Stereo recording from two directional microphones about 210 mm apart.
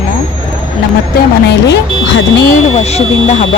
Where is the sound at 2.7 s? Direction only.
30° left (ahead or behind).